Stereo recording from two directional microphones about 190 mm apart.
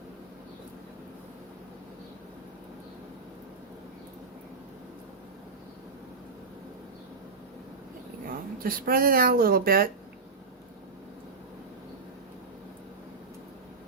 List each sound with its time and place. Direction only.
8.3 s speech: 50° right (ahead or behind)